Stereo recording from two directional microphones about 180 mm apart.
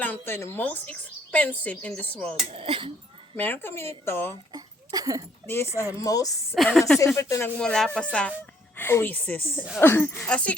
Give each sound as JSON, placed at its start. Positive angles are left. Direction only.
{"t": 0.0, "sound": "a woman's voice", "side_deg": 10}
{"t": 2.5, "sound": "speech", "side_deg": -30}
{"t": 3.3, "sound": "a woman's voice", "side_deg": 10}
{"t": 4.5, "sound": "a sound", "side_deg": -20}
{"t": 6.0, "sound": "speech", "side_deg": 20}
{"t": 6.7, "sound": "speech", "side_deg": 0}
{"t": 7.0, "sound": "a woman's voice", "side_deg": 15}
{"t": 7.6, "sound": "a woman's voice", "side_deg": 5}